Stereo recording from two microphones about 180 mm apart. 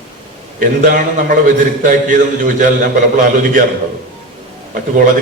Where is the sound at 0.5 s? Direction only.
50° right (ahead or behind).